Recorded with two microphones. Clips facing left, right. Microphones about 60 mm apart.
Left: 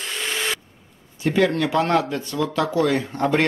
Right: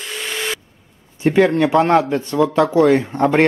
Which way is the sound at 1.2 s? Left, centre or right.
Right.